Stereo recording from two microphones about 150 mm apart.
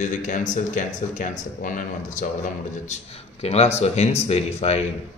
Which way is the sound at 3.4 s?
45° left (ahead or behind).